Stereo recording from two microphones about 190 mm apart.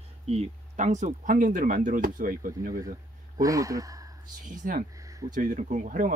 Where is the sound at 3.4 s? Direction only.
15° right (ahead or behind).